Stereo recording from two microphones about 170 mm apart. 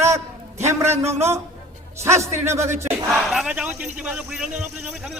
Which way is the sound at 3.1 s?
5° right (ahead or behind).